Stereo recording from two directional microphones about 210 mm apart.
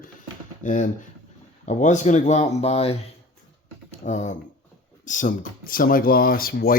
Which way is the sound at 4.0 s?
35° left (ahead or behind).